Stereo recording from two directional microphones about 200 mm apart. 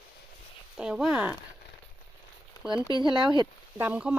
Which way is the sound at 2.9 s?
25° right (ahead or behind).